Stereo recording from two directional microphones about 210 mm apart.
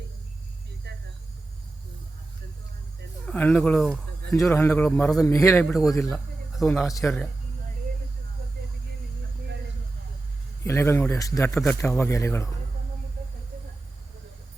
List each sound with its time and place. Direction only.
0.9 s a sound: 55° right (ahead or behind)
3.2 s a man's voice: 5° left (ahead or behind)
6.6 s speech: 5° left (ahead or behind)
6.8 s a man's voice: 15° left (ahead or behind)
10.6 s a man's voice: 10° left (ahead or behind)